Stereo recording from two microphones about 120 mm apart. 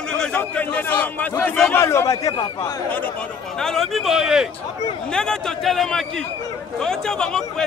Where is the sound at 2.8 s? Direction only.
10° left (ahead or behind).